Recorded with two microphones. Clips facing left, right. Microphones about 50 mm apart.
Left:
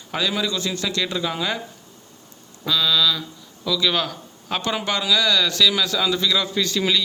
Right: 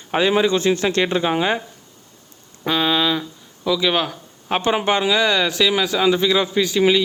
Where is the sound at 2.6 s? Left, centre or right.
Right.